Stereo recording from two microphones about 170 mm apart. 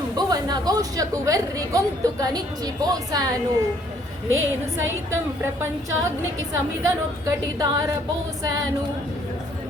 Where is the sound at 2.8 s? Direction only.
20° right (ahead or behind).